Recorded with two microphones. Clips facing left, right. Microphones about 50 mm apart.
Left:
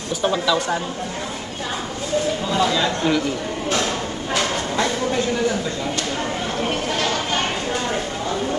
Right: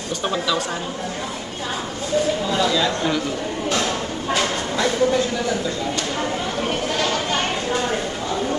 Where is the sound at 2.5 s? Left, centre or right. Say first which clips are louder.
Left 2 dB; centre.